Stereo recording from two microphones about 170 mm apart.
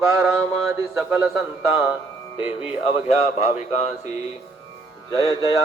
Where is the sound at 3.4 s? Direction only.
40° left (ahead or behind).